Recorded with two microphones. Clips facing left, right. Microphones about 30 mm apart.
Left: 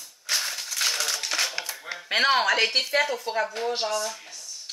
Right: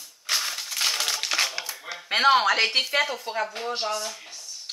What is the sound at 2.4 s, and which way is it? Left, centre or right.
Speech, centre.